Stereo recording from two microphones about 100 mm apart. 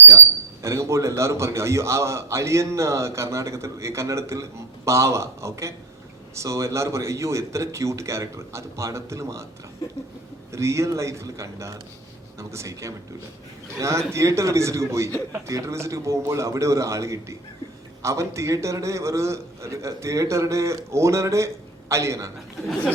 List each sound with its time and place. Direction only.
0.6 s a man's voice: 30° right (ahead or behind)
10.5 s a man's voice: 30° right (ahead or behind)